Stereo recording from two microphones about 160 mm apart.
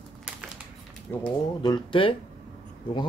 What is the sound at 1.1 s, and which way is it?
Speech, 15° left (ahead or behind).